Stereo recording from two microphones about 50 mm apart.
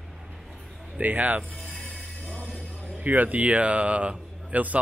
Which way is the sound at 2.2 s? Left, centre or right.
Left.